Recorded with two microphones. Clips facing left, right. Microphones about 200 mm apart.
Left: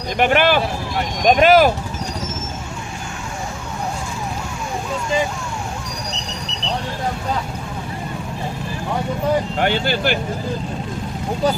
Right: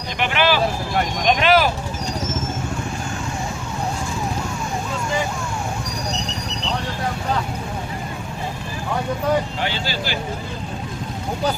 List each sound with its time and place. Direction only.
0.2 s speech: 50° left (ahead or behind)
9.6 s speech: 55° left (ahead or behind)